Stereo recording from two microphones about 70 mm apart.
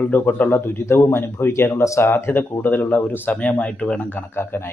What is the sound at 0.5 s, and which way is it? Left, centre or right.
Speech, left.